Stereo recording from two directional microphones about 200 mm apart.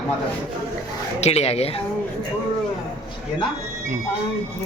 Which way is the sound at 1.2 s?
30° left (ahead or behind).